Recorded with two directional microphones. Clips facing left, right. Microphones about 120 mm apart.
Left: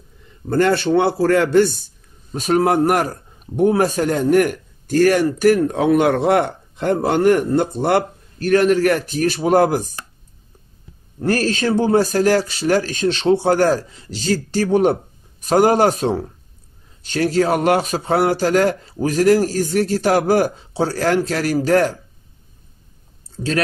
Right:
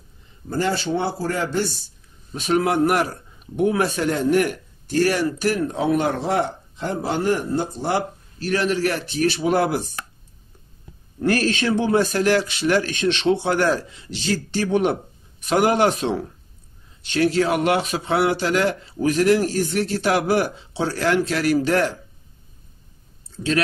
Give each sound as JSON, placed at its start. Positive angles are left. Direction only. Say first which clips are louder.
{"t": 0.5, "sound": "speech", "louder": "left 7 dB", "side_deg": 60}
{"t": 2.3, "sound": "speech", "louder": "left 4 dB", "side_deg": 40}
{"t": 11.1, "sound": "a man's voice", "louder": "left 1 dB", "side_deg": 35}
{"t": 23.3, "sound": "speech", "louder": "left 1 dB", "side_deg": 40}